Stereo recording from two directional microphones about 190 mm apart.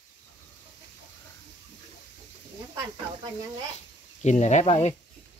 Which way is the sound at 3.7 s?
35° left (ahead or behind).